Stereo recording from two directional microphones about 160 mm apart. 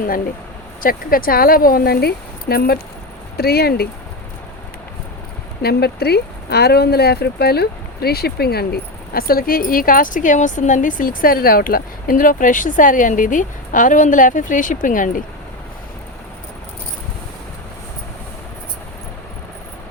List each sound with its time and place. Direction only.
0.8 s speech: 65° left (ahead or behind); by 3.8 s 80° left
5.6 s speech: 85° left; by 15.2 s 55° left (ahead or behind)